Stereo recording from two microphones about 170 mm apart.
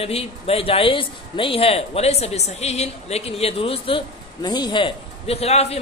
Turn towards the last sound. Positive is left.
turn(degrees=35)  # may be behind; listen again after turning